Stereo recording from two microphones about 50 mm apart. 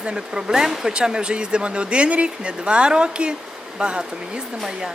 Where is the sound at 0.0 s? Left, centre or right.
Centre.